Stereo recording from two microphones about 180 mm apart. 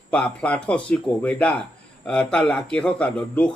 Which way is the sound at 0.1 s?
5° left (ahead or behind).